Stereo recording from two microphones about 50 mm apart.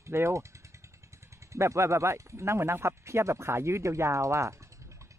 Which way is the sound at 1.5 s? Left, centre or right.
Right.